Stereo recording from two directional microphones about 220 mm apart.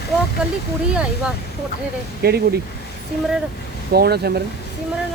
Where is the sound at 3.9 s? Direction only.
45° right (ahead or behind).